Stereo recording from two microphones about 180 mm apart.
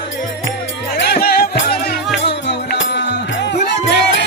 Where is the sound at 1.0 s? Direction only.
60° left (ahead or behind).